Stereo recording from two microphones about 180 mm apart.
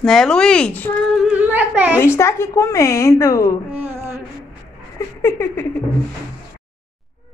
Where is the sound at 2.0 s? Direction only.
15° left (ahead or behind).